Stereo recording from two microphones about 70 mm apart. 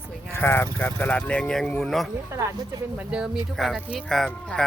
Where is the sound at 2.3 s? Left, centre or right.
Right.